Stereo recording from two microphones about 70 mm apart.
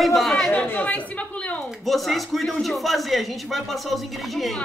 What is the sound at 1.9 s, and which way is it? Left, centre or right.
Speech, centre.